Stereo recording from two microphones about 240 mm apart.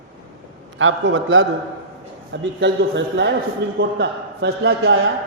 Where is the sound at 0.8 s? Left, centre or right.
Right.